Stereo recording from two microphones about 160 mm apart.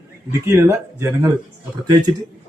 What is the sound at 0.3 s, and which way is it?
Speech, 15° right (ahead or behind).